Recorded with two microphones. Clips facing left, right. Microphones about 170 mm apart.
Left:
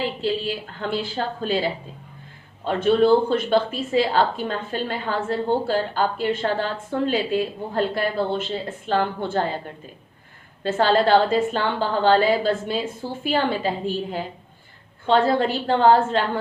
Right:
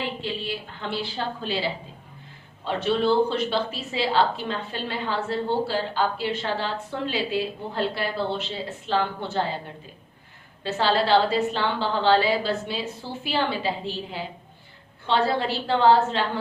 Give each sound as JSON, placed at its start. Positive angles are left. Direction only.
{"t": 0.2, "sound": "speech", "side_deg": 40}
{"t": 10.6, "sound": "speech", "side_deg": 50}